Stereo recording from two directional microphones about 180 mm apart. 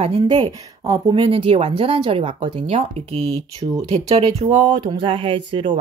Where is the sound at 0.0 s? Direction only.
30° right (ahead or behind).